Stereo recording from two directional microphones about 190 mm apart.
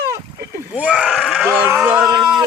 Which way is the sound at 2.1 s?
20° right (ahead or behind).